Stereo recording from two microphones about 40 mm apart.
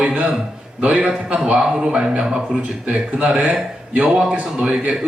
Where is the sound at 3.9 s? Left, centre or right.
Right.